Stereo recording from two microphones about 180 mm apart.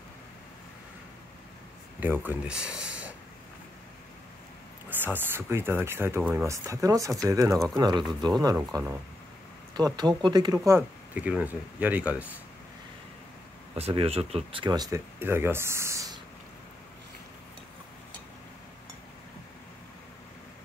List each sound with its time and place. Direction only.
2.0 s speech: 10° right (ahead or behind)
4.8 s speech: 10° right (ahead or behind)
9.8 s speech: 25° right (ahead or behind)
10.7 s speech: 10° right (ahead or behind)
13.7 s speech: 35° right (ahead or behind); by 16.2 s 15° right (ahead or behind)